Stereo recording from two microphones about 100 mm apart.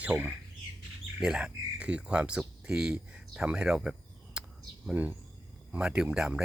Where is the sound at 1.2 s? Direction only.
10° right (ahead or behind).